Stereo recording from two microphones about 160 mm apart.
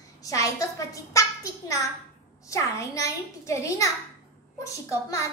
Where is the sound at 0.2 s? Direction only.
20° left (ahead or behind).